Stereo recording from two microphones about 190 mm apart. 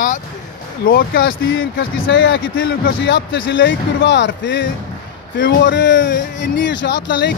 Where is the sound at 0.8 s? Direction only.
50° left (ahead or behind).